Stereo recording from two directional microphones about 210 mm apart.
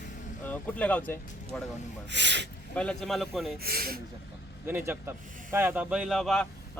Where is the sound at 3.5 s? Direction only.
45° right (ahead or behind).